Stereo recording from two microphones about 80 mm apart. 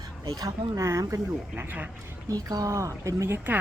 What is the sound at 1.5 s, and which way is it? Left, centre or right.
Speech, right.